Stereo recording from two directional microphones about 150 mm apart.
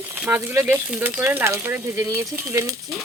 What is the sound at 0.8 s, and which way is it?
Speech, 10° right (ahead or behind).